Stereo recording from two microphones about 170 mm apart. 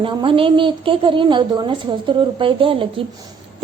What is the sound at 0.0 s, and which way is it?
A woman's voice, 30° right (ahead or behind).